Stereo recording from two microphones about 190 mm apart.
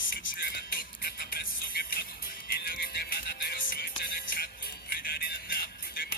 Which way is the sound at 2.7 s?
55° left (ahead or behind).